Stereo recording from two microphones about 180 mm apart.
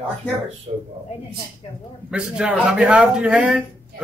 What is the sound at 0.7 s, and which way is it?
Speech, 35° right (ahead or behind).